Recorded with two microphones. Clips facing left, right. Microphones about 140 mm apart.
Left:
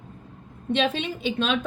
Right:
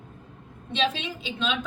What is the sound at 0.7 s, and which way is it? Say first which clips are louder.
Speech: left 2 dB; 55° left (ahead or behind).